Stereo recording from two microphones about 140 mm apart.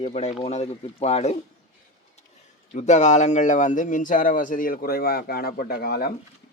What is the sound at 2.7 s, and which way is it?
Speech, 55° left (ahead or behind).